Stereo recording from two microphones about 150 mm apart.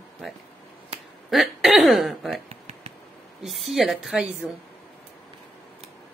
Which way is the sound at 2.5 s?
45° right (ahead or behind).